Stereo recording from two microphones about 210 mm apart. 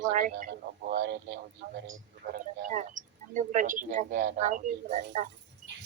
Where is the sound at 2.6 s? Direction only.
35° right (ahead or behind).